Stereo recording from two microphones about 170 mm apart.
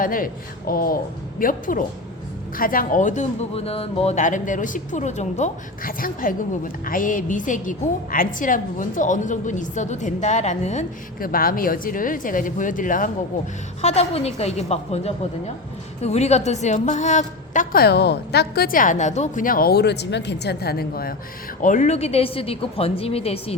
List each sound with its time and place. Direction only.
0.0 s a woman's voice: 55° left (ahead or behind)
13.8 s a woman's voice: 40° left (ahead or behind); by 21.2 s 60° left (ahead or behind)
21.6 s a woman's voice: 45° left (ahead or behind)